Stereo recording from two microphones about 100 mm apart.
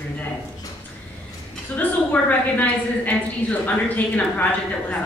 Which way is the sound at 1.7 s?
15° left (ahead or behind).